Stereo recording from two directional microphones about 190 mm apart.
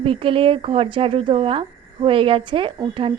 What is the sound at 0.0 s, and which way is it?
A woman's voice, 30° right (ahead or behind).